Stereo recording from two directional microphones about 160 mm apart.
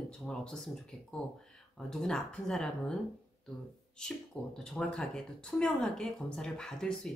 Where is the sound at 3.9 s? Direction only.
5° left (ahead or behind).